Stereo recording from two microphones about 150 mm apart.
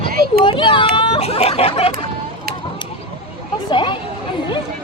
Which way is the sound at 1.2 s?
45° left (ahead or behind).